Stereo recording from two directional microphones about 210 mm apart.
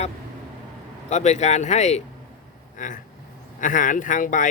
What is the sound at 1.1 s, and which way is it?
Speech, 35° left (ahead or behind).